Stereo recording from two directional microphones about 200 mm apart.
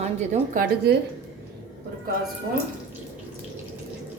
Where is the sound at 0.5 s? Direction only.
45° right (ahead or behind).